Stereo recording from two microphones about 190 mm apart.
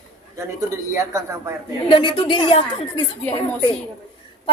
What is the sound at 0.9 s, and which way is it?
Speech, 15° right (ahead or behind).